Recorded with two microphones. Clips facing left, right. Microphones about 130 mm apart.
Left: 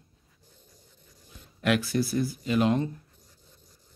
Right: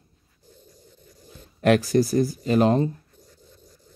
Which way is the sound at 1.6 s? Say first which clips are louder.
Right 7 dB; 40° right (ahead or behind).